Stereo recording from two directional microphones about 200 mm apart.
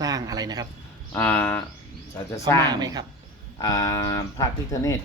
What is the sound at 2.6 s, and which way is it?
Speech, 20° right (ahead or behind).